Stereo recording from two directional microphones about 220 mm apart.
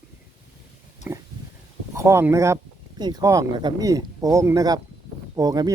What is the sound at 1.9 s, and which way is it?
Speech, 15° right (ahead or behind).